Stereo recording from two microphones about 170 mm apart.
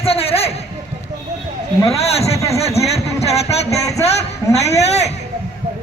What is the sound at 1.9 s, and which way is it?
Speech, 35° left (ahead or behind).